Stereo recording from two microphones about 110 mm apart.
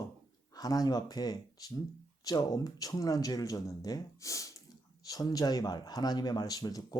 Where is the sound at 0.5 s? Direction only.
35° left (ahead or behind).